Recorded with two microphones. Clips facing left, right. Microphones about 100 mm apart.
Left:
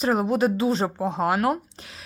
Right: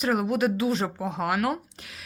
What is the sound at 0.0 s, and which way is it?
Speech, 30° left (ahead or behind).